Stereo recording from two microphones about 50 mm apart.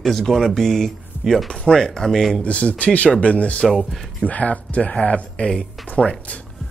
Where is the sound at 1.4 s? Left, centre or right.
Centre.